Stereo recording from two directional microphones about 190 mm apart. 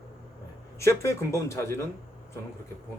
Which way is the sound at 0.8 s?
15° left (ahead or behind).